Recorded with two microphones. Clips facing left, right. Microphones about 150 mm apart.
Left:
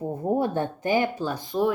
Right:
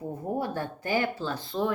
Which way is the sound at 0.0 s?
25° left (ahead or behind).